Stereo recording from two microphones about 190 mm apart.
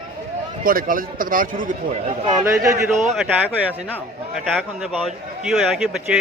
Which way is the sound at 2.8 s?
Centre (ahead or behind).